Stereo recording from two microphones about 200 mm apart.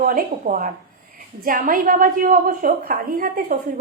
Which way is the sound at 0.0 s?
45° right (ahead or behind).